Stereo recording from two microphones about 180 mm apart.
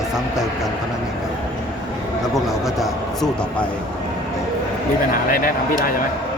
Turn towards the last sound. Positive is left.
turn(degrees=55)  # may be behind; listen again after turning